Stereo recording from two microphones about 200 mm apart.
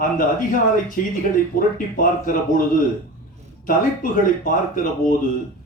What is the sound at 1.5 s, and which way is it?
Speech, 45° left (ahead or behind).